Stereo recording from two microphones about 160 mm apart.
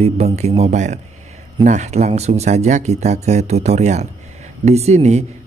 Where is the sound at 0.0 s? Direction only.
40° right (ahead or behind).